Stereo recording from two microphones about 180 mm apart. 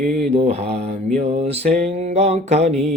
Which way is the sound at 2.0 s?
40° right (ahead or behind).